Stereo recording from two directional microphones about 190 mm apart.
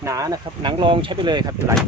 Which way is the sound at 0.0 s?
15° right (ahead or behind).